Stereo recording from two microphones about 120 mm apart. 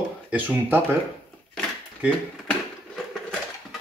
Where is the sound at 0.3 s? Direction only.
15° right (ahead or behind).